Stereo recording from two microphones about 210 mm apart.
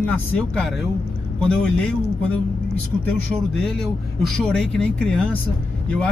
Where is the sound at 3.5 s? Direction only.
Centre (ahead or behind).